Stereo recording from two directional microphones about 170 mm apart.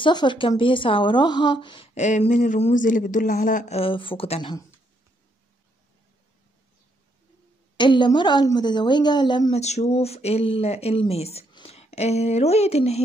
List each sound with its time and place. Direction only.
0.0 s a woman's voice: 25° left (ahead or behind)
2.0 s speech: 45° left (ahead or behind); by 4.6 s 25° left (ahead or behind)
7.7 s a woman's voice: 25° left (ahead or behind)
9.5 s speech: 40° left (ahead or behind)